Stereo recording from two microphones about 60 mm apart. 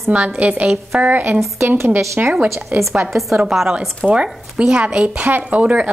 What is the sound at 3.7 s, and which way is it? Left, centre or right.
A woman's voice, centre.